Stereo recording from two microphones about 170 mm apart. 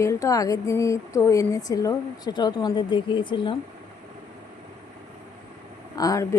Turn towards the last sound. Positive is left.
turn(degrees=20)  # may be behind; listen again after turning